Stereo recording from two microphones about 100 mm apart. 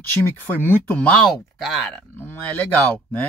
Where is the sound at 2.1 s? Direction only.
15° left (ahead or behind).